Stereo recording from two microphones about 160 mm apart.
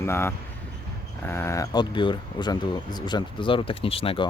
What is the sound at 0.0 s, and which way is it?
Speech, 15° left (ahead or behind).